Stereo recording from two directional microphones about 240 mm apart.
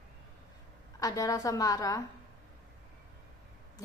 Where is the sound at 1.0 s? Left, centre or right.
Centre.